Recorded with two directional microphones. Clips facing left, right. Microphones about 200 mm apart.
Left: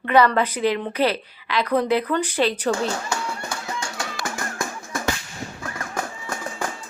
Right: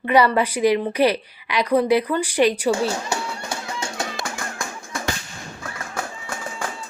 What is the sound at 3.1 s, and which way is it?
Music, 25° right (ahead or behind).